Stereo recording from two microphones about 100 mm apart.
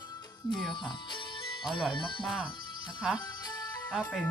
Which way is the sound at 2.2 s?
5° right (ahead or behind).